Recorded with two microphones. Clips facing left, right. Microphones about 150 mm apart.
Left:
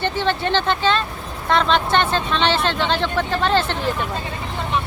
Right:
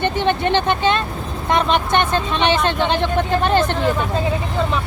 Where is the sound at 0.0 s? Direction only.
15° right (ahead or behind).